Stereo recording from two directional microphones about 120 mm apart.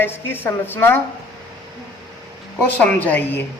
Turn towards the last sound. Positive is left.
turn(degrees=15)  # may be behind; listen again after turning